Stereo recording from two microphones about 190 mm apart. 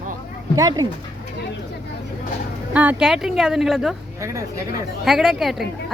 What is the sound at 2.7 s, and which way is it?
Speech, 5° right (ahead or behind).